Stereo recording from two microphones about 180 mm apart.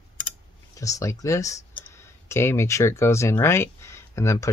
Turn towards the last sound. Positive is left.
turn(degrees=15)  # may be behind; listen again after turning